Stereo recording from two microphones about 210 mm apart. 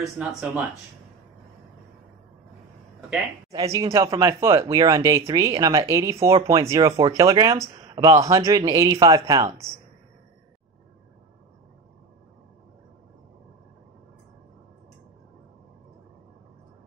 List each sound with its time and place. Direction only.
0.0 s speech: 5° right (ahead or behind)
3.5 s speech: 15° right (ahead or behind)